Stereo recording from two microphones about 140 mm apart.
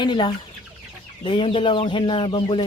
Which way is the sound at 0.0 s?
35° left (ahead or behind).